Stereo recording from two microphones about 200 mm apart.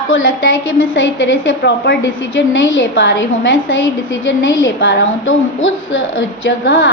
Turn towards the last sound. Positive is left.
turn(degrees=65)  # may be behind; listen again after turning